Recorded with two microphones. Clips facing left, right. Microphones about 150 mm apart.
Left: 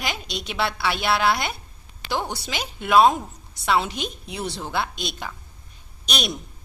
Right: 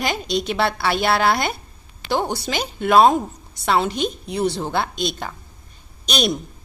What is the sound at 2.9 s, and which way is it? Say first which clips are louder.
Speech: right 3 dB; 40° right (ahead or behind).